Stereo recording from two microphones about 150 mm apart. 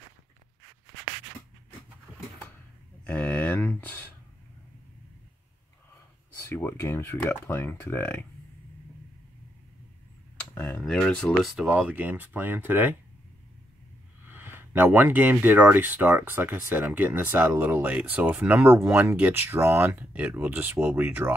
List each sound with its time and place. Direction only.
3.0 s a sound: 10° left (ahead or behind)
6.5 s speech: 15° left (ahead or behind)
10.6 s speech: 5° left (ahead or behind); by 12.9 s 15° right (ahead or behind)
14.2 s speech: 15° right (ahead or behind)